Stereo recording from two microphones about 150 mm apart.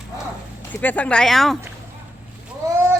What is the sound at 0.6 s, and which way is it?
Speech, 15° left (ahead or behind).